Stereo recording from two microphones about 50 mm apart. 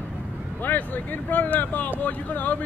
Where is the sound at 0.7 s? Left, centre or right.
Left.